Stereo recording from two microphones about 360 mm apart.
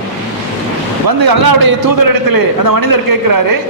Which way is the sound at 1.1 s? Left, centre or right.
Right.